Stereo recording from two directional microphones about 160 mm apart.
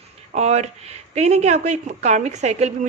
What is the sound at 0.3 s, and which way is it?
A woman's voice, 45° right (ahead or behind).